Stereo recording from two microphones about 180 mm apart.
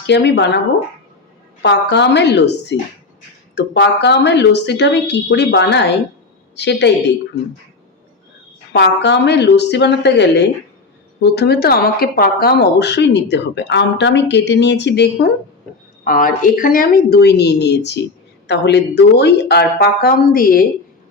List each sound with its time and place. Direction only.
0.1 s speech: 70° left (ahead or behind)
1.6 s speech: 75° left (ahead or behind)
8.7 s speech: 70° left (ahead or behind)
16.0 s speech: 50° left (ahead or behind)